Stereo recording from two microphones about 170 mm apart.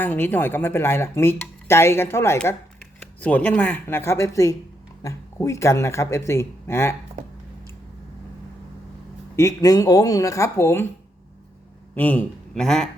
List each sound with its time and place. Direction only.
0.0 s speech: 10° left (ahead or behind)
9.3 s speech: 15° left (ahead or behind)
11.9 s a man's voice: 10° left (ahead or behind)